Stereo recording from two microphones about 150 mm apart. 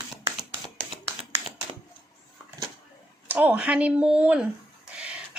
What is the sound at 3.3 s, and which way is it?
A woman's voice, 10° right (ahead or behind).